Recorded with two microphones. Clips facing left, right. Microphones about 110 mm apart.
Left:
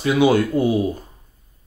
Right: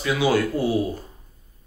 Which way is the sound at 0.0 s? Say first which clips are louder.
Left 5 dB; 20° left (ahead or behind).